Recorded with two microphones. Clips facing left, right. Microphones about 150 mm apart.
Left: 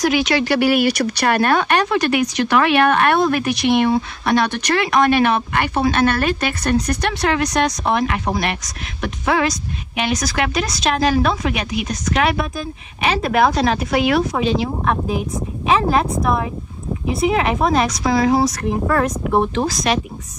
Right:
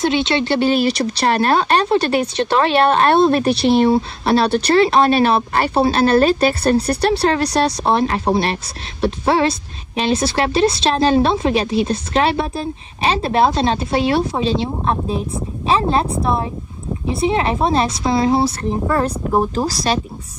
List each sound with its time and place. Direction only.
0.0 s a woman's voice: 25° right (ahead or behind)
15.8 s a woman's voice: 30° right (ahead or behind)